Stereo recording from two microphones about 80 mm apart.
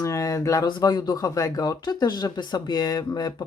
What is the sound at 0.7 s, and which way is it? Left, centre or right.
Speech, left.